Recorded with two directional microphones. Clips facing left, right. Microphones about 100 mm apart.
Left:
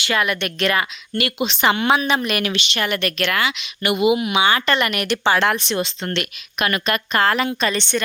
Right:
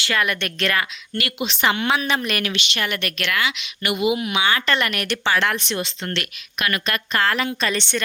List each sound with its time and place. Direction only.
0.1 s speech: 5° left (ahead or behind); by 2.0 s 25° left (ahead or behind)
2.0 s speech: 10° left (ahead or behind)
2.5 s speech: 35° left (ahead or behind)
7.6 s speech: 10° left (ahead or behind)